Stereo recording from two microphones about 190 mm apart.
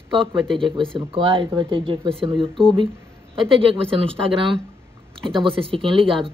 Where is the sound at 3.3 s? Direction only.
30° right (ahead or behind).